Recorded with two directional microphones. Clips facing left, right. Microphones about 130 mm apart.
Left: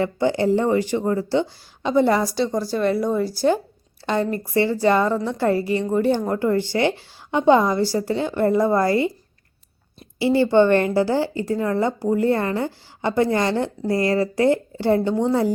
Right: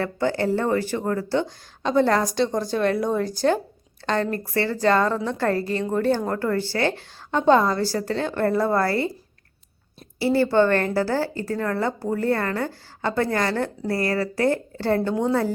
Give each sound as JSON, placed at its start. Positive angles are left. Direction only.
{"t": 0.0, "sound": "a woman's voice", "side_deg": 15}
{"t": 10.2, "sound": "a woman's voice", "side_deg": 20}